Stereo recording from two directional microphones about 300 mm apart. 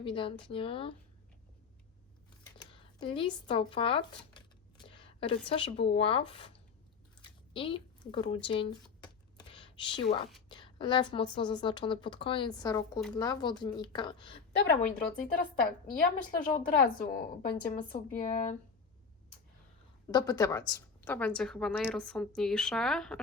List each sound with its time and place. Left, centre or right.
0.0 s speech: centre
3.2 s speech: centre
7.3 s a sound: centre
8.4 s speech: centre
9.5 s whispering: centre
10.5 s speech: centre
14.9 s speech: left
20.1 s a woman's voice: centre